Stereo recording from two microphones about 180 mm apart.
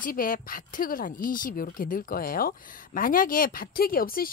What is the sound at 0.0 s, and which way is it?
Speech, 50° left (ahead or behind).